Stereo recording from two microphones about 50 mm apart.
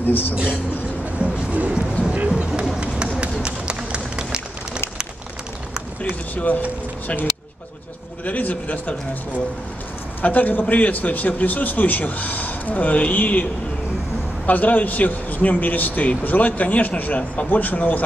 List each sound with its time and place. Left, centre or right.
0.0 s a man's voice: left
1.5 s music: right
2.0 s vehicle: right
3.2 s run: centre
6.3 s a man's voice: left
8.3 s a man's voice: left
10.2 s a man's voice: left